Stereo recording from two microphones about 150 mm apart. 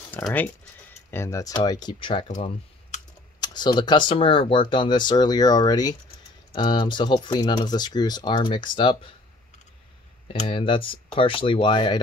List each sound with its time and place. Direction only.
0.1 s speech: 10° left (ahead or behind); by 2.2 s 35° left (ahead or behind)
2.2 s speech: 50° left (ahead or behind)
3.3 s speech: 30° left (ahead or behind)
10.2 s speech: 40° left (ahead or behind)